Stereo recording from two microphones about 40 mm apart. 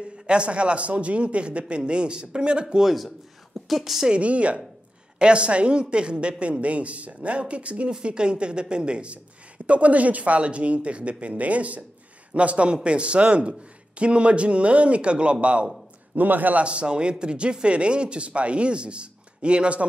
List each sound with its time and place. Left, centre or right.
0.3 s speech: right
2.8 s a woman's voice: centre
4.1 s speech: right
9.7 s speech: right
16.2 s a man's voice: right
16.6 s speech: right